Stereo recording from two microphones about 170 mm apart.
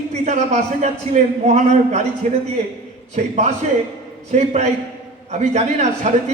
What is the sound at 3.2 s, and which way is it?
A man's voice, 40° right (ahead or behind).